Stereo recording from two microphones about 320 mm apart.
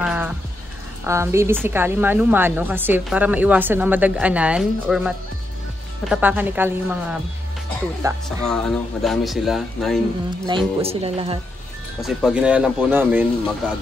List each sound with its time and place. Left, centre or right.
0.0 s music: centre
1.0 s a woman's voice: centre
8.5 s a woman's voice: centre
10.4 s speech: centre
12.0 s a woman's voice: centre